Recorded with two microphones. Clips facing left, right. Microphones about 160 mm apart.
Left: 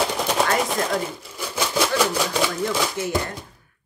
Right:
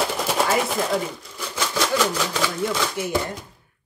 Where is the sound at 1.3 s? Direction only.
10° left (ahead or behind).